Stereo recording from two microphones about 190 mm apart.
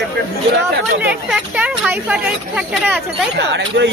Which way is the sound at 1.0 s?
5° right (ahead or behind).